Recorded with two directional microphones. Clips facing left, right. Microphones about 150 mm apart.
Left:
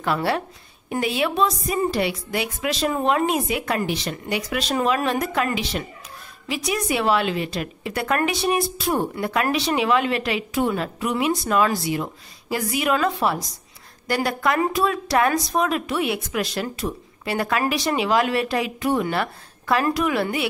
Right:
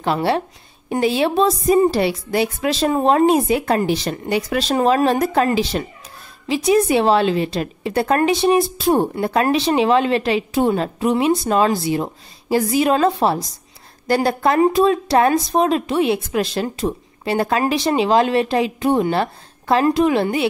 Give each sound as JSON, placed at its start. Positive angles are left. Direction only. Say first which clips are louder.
{"t": 0.0, "sound": "a woman's voice", "louder": "right 4 dB", "side_deg": -25}